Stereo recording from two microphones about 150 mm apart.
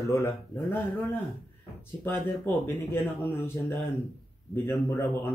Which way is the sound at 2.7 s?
15° left (ahead or behind).